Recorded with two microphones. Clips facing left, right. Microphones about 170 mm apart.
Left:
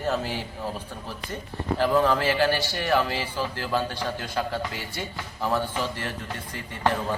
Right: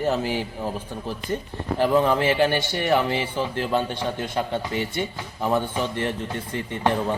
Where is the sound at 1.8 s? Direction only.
20° right (ahead or behind).